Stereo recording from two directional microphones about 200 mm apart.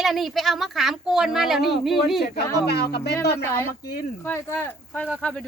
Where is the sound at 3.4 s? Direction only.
10° left (ahead or behind).